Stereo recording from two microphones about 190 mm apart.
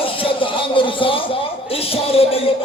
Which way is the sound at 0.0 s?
30° left (ahead or behind).